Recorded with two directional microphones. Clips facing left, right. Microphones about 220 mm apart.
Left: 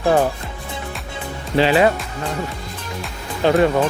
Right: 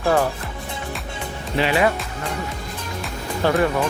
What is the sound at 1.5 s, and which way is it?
Speech, 30° left (ahead or behind).